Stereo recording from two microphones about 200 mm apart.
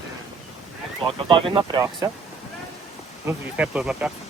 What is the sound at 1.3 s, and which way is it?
Speech, 20° right (ahead or behind).